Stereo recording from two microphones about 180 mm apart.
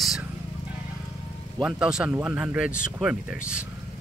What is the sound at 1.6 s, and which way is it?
Speech, 5° right (ahead or behind).